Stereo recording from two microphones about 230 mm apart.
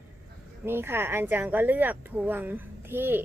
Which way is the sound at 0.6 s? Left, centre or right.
Centre.